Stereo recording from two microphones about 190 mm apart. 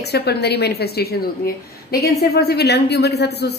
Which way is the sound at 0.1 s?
60° left (ahead or behind).